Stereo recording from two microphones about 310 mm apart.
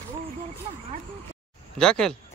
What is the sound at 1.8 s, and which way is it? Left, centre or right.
Speech, centre.